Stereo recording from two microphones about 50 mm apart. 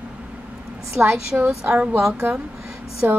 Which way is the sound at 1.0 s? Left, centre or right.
Right.